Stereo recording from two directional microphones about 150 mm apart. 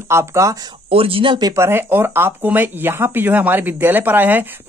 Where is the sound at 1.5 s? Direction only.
15° right (ahead or behind).